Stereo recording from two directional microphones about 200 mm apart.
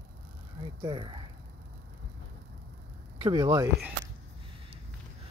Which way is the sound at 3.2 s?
20° right (ahead or behind).